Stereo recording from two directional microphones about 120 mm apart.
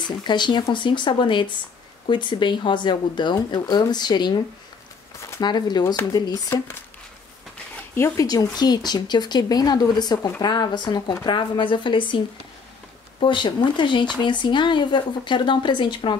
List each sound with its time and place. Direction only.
0.2 s speech: 40° left (ahead or behind)
5.4 s speech: 40° left (ahead or behind)
7.9 s speech: 25° left (ahead or behind); by 12.2 s 40° left (ahead or behind)
13.2 s speech: 40° left (ahead or behind)